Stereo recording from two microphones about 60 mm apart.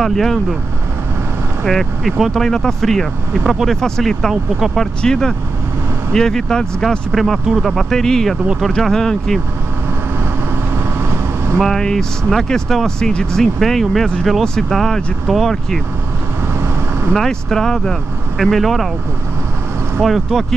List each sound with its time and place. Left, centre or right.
0.0 s speech: centre
1.6 s speech: centre
4.3 s speech: centre
5.0 s speech: centre
7.7 s speech: centre
11.1 s vehicle: right
11.6 s speech: centre
17.1 s speech: centre
20.0 s speech: centre